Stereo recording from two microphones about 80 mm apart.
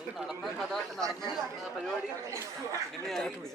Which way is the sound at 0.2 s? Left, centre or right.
Centre.